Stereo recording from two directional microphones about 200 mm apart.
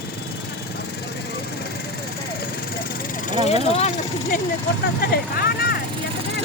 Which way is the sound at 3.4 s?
30° left (ahead or behind).